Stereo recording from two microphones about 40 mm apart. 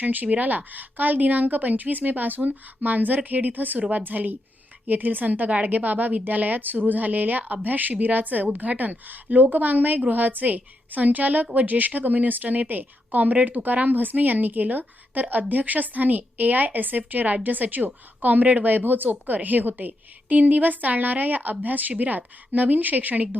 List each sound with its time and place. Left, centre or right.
0.0 s a woman's voice: right